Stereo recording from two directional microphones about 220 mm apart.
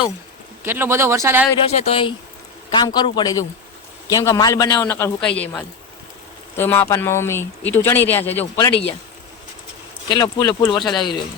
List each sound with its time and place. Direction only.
0.6 s speech: 10° right (ahead or behind)
1.6 s speech: 25° left (ahead or behind); by 5.3 s 10° left (ahead or behind)
6.6 s speech: 10° left (ahead or behind)
10.1 s speech: 20° left (ahead or behind)